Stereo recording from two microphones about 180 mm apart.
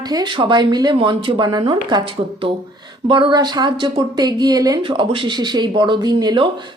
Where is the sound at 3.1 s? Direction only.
25° right (ahead or behind).